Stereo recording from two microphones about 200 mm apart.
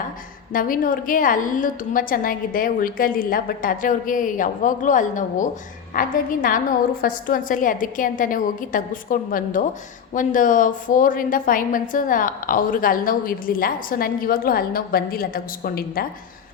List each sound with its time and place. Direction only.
0.5 s a woman's voice: 45° left (ahead or behind)